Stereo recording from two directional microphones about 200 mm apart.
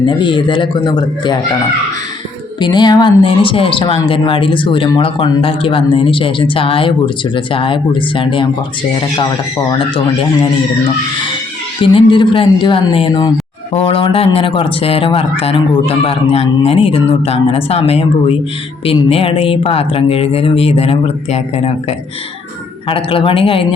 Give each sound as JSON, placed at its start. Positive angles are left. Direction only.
{"t": 0.0, "sound": "speech", "side_deg": 25}
{"t": 2.6, "sound": "speech", "side_deg": 20}
{"t": 9.7, "sound": "speech", "side_deg": 25}
{"t": 11.9, "sound": "speech", "side_deg": 25}